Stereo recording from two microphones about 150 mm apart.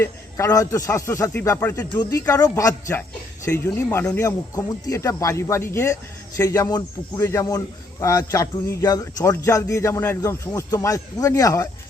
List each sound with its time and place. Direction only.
0.0 s a man's voice: 20° left (ahead or behind)